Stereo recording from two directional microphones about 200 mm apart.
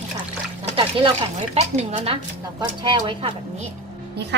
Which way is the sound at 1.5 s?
30° right (ahead or behind).